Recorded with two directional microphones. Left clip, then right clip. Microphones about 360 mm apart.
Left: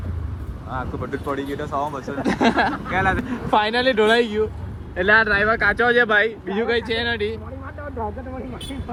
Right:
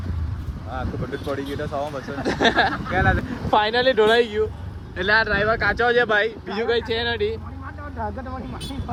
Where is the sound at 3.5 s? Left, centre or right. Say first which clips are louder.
Even; left.